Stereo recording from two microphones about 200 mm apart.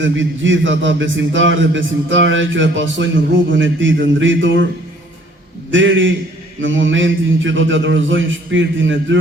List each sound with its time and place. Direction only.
0.0 s a man's voice: 70° right (ahead or behind)
5.7 s a man's voice: 70° right (ahead or behind)